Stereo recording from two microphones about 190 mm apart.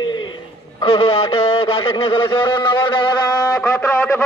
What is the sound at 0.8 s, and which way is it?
A man's voice, 30° left (ahead or behind).